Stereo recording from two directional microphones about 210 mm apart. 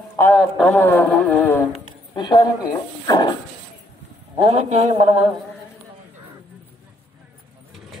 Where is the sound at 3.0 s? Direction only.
20° left (ahead or behind).